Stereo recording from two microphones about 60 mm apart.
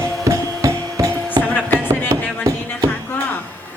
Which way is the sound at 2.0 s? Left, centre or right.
Right.